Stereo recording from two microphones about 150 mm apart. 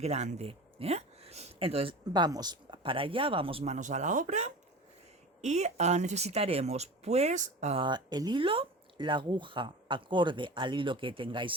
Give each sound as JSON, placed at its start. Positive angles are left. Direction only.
{"t": 0.0, "sound": "speech", "side_deg": -50}
{"t": 7.8, "sound": "speech", "side_deg": -30}